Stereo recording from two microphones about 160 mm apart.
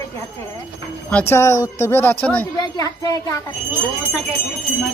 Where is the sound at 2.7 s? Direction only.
25° left (ahead or behind).